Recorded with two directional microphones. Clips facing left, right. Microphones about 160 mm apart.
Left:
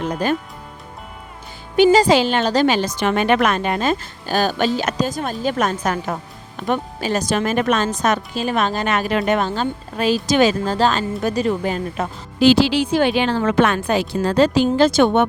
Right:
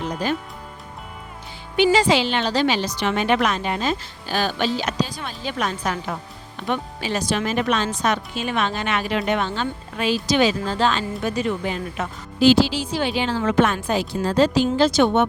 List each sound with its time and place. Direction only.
0.1 s speech: 55° left (ahead or behind)
1.7 s a woman's voice: 40° left (ahead or behind)
12.4 s a woman's voice: 75° left (ahead or behind); by 15.3 s 55° left (ahead or behind)